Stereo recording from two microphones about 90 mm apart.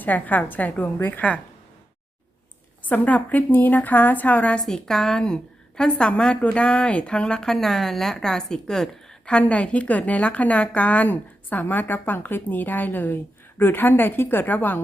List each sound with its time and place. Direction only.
0.0 s a woman's voice: 20° left (ahead or behind)
2.8 s a woman's voice: 20° left (ahead or behind)